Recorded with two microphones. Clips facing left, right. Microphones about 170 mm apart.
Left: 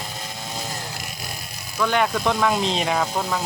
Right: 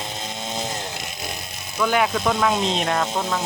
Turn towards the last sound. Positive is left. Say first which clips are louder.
# even
turn(degrees=0)  # may be behind; listen again after turning